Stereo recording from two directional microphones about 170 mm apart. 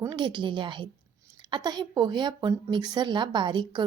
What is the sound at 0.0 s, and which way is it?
A woman's voice, 25° right (ahead or behind).